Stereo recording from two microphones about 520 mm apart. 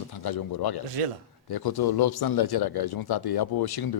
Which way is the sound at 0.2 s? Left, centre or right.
Left.